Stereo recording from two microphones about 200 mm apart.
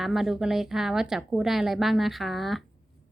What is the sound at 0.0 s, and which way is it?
A woman's voice, centre (ahead or behind).